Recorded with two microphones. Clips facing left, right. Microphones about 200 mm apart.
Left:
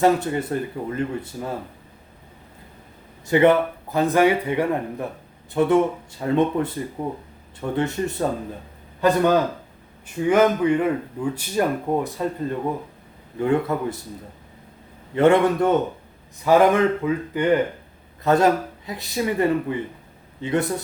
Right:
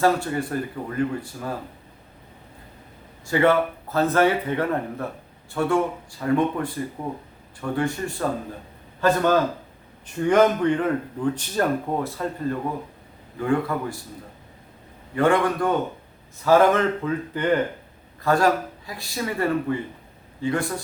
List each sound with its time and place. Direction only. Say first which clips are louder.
0.0 s speech: left 2 dB; 20° left (ahead or behind)
3.2 s speech: left 3 dB; 20° left (ahead or behind)
10.2 s speech: left 1 dB; 5° left (ahead or behind); by 14.0 s 20° left (ahead or behind)
15.1 s speech: left 4 dB; 25° left (ahead or behind)